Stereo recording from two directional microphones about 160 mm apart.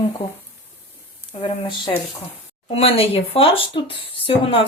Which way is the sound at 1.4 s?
35° left (ahead or behind).